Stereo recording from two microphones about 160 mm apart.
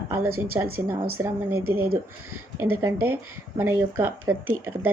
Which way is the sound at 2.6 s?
15° right (ahead or behind).